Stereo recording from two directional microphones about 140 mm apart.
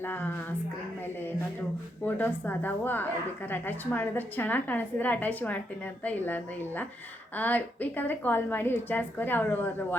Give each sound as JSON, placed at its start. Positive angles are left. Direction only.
{"t": 0.0, "sound": "a woman's voice", "side_deg": 15}
{"t": 2.0, "sound": "a woman's voice", "side_deg": 10}